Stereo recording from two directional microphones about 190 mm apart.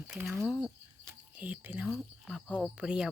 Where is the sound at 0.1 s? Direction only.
5° right (ahead or behind).